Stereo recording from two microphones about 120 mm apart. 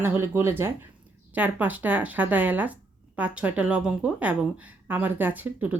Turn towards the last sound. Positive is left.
turn(degrees=-15)  # may be behind; listen again after turning